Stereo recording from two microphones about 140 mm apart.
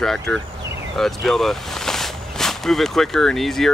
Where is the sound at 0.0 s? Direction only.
5° left (ahead or behind).